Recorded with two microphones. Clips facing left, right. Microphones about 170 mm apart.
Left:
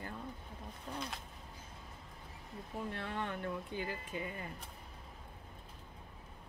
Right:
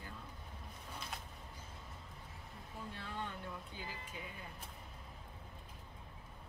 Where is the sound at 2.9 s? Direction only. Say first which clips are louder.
Left 4 dB; 65° left (ahead or behind).